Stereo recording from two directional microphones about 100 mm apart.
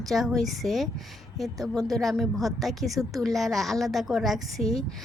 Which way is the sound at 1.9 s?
Centre (ahead or behind).